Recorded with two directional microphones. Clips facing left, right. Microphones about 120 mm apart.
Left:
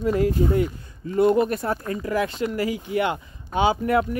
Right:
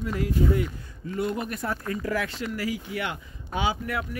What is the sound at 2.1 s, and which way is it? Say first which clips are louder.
Speech: left 7 dB; 20° left (ahead or behind).